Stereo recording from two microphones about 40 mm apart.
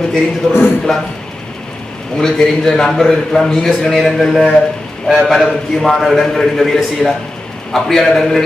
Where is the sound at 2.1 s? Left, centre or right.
Centre.